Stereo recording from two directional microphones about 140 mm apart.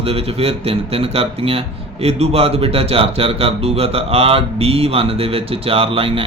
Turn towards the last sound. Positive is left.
turn(degrees=-40)  # may be behind; listen again after turning